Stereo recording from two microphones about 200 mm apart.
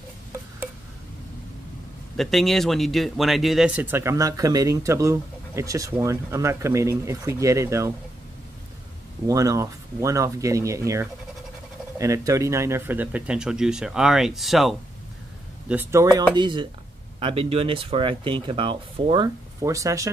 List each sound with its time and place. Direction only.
2.1 s speech: centre (ahead or behind)
9.3 s speech: 15° right (ahead or behind); by 14.8 s centre (ahead or behind)
15.7 s speech: 10° right (ahead or behind)